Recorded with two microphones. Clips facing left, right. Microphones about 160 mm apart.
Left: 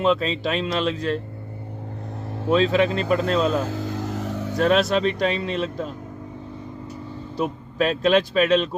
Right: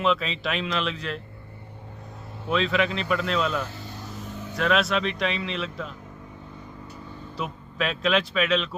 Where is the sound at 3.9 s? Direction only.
90° left.